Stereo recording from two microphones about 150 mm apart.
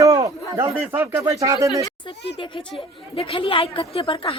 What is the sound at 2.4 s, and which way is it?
A woman's voice, 35° left (ahead or behind).